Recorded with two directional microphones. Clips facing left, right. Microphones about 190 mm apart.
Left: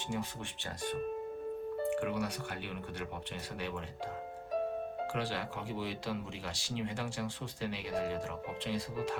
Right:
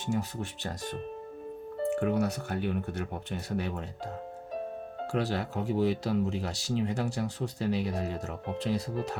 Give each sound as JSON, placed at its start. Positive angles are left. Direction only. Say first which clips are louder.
{"t": 0.1, "sound": "speech", "louder": "right 7 dB", "side_deg": -40}
{"t": 5.1, "sound": "speech", "louder": "right 11 dB", "side_deg": -40}